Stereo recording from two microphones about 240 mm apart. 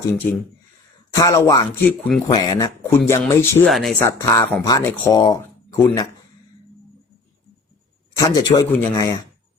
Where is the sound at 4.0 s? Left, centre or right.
Centre.